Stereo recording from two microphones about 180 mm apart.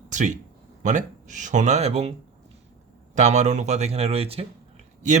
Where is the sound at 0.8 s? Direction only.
45° right (ahead or behind).